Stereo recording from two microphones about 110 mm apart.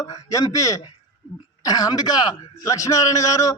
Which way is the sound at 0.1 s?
30° left (ahead or behind).